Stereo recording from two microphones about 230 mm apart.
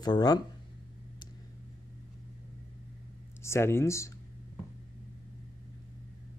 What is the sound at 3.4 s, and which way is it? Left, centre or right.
Speech, centre.